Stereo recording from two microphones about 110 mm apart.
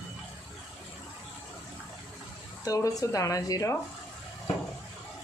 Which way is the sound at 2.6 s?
30° left (ahead or behind).